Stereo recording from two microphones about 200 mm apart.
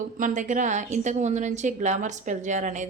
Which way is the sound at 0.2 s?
40° right (ahead or behind).